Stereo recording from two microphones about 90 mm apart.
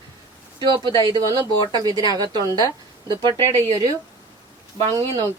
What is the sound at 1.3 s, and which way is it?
A woman's voice, 45° right (ahead or behind).